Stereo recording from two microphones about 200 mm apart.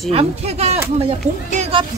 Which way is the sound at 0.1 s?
30° right (ahead or behind).